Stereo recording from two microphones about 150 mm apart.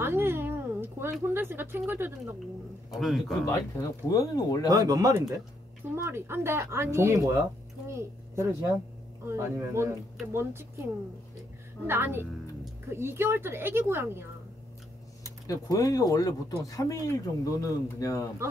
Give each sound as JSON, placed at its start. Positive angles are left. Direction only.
{"t": 0.0, "sound": "a sound", "side_deg": -15}
{"t": 1.3, "sound": "speech", "side_deg": -15}
{"t": 2.9, "sound": "a man's voice", "side_deg": 0}
{"t": 3.4, "sound": "speech", "side_deg": 25}
{"t": 4.6, "sound": "speech", "side_deg": -25}
{"t": 11.8, "sound": "speech", "side_deg": -15}
{"t": 15.4, "sound": "speech", "side_deg": 25}